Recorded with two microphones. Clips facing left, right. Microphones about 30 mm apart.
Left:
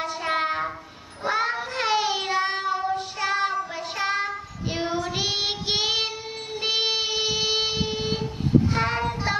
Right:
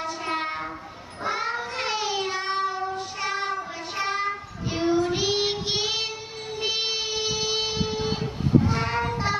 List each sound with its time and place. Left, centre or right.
0.0 s train: centre
1.5 s child singing: centre
8.7 s a sound: centre